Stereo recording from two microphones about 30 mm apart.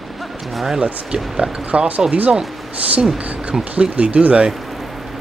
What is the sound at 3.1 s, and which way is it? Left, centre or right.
Speech, right.